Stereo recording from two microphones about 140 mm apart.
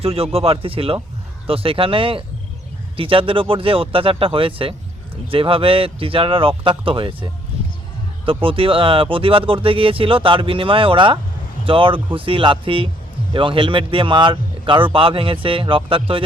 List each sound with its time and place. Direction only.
0.0 s speech: 45° right (ahead or behind)